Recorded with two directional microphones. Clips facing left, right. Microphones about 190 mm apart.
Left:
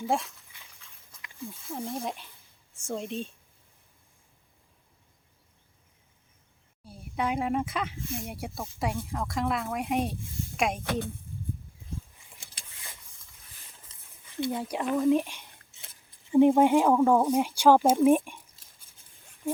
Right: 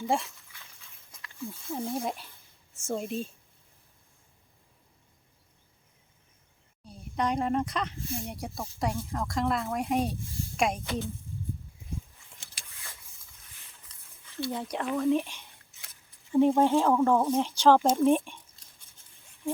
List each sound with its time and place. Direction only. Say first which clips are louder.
0.0 s speech: even; centre (ahead or behind)
1.6 s speech: right 2 dB; centre (ahead or behind)
6.8 s speech: right 1 dB; 5° left (ahead or behind)
10.8 s a woman's voice: left 2 dB; 55° left (ahead or behind)
12.6 s vehicle: left 1 dB; 15° left (ahead or behind)
13.8 s a sound: left 1 dB; 15° left (ahead or behind)
14.5 s speech: left 1 dB; 5° left (ahead or behind)
16.3 s speech: left 3 dB; 15° left (ahead or behind)